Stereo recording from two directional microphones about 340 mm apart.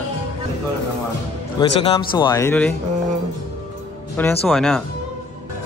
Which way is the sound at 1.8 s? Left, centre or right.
Left.